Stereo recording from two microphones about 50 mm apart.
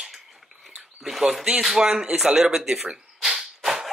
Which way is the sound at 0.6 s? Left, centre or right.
Centre.